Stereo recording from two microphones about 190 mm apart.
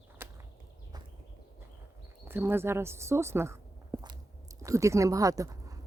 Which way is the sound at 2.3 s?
10° right (ahead or behind).